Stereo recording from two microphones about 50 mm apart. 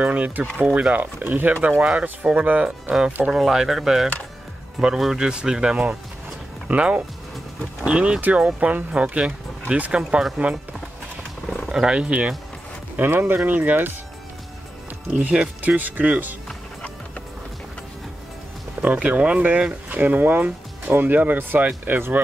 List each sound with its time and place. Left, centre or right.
0.0 s speech: right
0.9 s speech: right
1.8 s speech: right
3.3 s speech: centre; by 10.3 s right
11.4 s roaring cats: centre
11.7 s speech: centre
13.0 s speech: right
15.0 s speech: right
18.8 s speech: right